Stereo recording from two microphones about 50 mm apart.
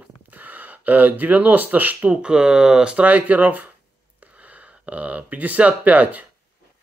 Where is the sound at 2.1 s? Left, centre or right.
Right.